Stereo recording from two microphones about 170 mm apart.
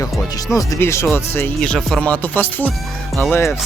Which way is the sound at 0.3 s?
20° left (ahead or behind).